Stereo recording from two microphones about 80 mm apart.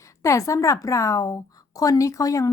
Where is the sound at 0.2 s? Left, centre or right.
Left.